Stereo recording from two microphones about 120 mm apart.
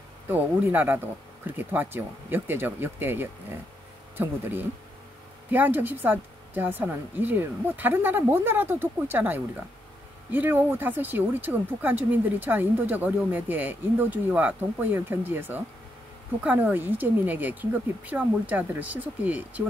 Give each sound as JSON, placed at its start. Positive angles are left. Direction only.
{"t": 0.3, "sound": "speech", "side_deg": -15}